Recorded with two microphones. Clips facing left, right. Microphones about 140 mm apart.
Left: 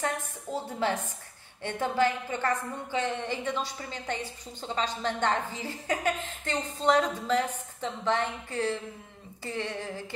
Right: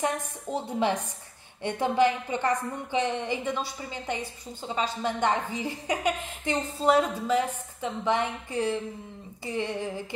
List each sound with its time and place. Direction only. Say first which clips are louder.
0.0 s a woman's voice: right 3 dB; 15° right (ahead or behind)